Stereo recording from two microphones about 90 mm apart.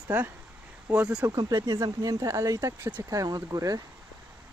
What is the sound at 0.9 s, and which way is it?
Speech, 10° right (ahead or behind).